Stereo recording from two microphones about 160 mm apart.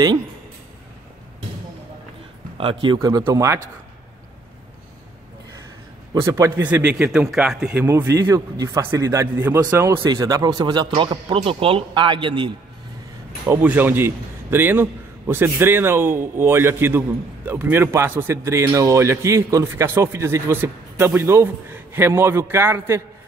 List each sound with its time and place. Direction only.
2.5 s a man's voice: 35° right (ahead or behind)
6.2 s a man's voice: 15° right (ahead or behind)
6.8 s speech: 5° right (ahead or behind)
7.8 s a man's voice: 15° right (ahead or behind)
13.5 s a man's voice: 10° right (ahead or behind)